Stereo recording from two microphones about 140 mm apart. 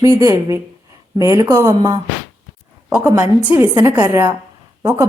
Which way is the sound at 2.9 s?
15° right (ahead or behind).